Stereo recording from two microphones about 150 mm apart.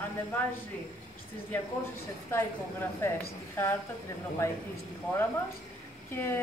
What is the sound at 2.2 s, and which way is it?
Speech, 15° left (ahead or behind).